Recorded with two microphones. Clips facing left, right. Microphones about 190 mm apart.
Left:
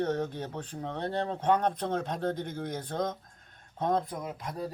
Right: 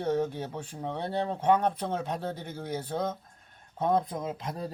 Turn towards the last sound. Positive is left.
turn(degrees=-25)  # may be behind; listen again after turning